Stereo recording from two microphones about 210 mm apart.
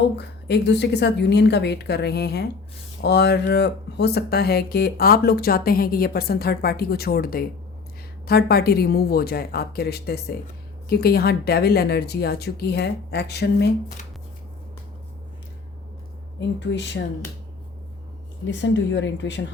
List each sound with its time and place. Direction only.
0.2 s a woman's voice: 55° left (ahead or behind)
16.6 s speech: 55° left (ahead or behind)
18.4 s speech: 60° left (ahead or behind)